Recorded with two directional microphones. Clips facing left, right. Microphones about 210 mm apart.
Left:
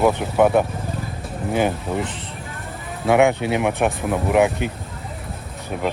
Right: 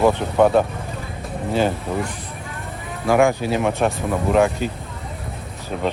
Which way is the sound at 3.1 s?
20° left (ahead or behind).